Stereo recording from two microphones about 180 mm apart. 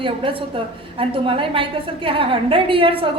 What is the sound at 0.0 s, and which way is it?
A woman's voice, 30° right (ahead or behind).